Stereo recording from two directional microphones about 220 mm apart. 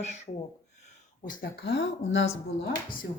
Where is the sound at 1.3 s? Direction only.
45° left (ahead or behind).